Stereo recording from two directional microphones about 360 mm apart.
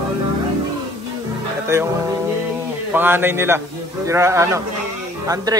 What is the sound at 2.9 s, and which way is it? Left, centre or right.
Speech, centre.